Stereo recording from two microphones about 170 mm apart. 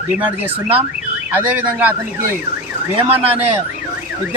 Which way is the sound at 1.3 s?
10° right (ahead or behind).